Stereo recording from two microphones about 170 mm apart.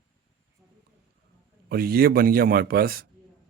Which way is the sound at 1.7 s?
65° right (ahead or behind).